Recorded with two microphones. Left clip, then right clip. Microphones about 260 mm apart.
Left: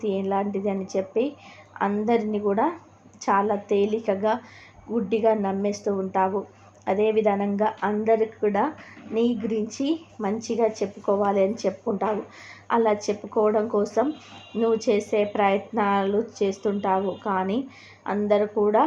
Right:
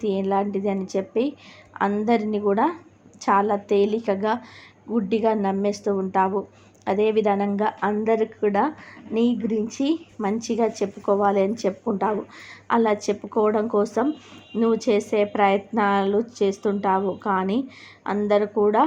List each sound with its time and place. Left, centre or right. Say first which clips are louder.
0.0 s a woman's voice: right 2 dB; right